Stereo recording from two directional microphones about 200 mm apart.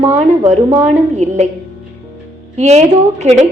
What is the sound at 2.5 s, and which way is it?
Speech, 35° right (ahead or behind).